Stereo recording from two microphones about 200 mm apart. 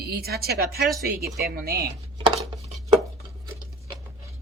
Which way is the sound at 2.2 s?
30° right (ahead or behind).